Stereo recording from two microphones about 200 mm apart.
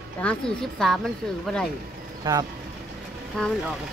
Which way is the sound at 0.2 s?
5° left (ahead or behind).